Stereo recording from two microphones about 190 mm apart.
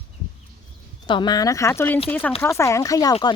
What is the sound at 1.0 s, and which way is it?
Speech, 25° left (ahead or behind).